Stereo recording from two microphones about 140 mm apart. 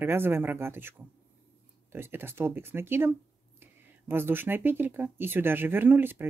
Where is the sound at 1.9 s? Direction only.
15° right (ahead or behind).